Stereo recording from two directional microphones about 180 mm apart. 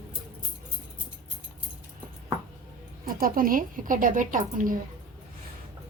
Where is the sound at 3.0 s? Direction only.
55° right (ahead or behind).